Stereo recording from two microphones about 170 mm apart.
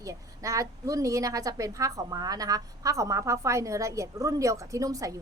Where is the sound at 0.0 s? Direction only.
20° right (ahead or behind).